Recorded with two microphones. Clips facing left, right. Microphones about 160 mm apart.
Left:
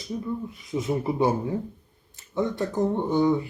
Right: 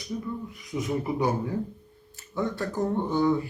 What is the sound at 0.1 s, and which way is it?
Speech, 20° left (ahead or behind).